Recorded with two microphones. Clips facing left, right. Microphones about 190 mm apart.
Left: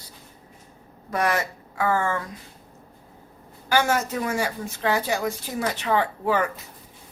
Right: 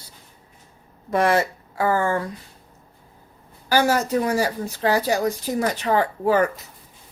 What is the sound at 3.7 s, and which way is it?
A woman's voice, 35° right (ahead or behind).